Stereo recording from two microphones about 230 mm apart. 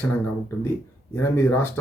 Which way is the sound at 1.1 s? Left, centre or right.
Centre.